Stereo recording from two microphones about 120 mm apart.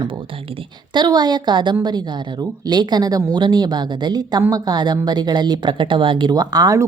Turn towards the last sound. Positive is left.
turn(degrees=-30)  # may be behind; listen again after turning